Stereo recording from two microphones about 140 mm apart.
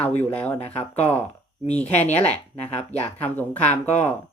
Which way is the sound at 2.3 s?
50° left (ahead or behind).